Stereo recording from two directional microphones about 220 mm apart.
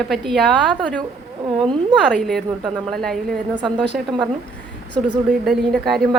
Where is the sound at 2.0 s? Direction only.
5° left (ahead or behind).